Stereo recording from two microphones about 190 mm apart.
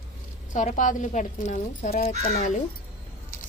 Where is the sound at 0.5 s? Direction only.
40° left (ahead or behind).